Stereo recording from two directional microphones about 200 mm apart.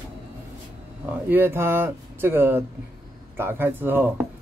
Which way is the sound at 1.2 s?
10° right (ahead or behind).